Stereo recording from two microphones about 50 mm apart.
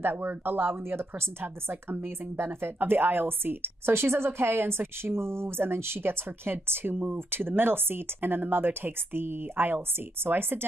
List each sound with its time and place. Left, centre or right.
0.0 s a woman's voice: right